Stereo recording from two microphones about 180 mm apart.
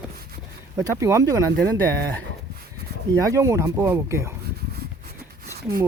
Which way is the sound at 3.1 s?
20° right (ahead or behind).